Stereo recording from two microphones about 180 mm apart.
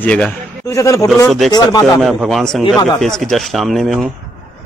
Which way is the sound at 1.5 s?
20° left (ahead or behind).